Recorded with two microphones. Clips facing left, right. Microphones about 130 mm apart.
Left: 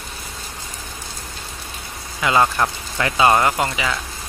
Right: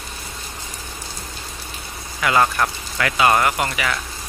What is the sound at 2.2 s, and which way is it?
Speech, 20° left (ahead or behind).